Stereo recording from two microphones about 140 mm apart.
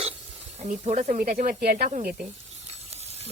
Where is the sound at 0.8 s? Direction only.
55° right (ahead or behind); by 1.9 s 90° right.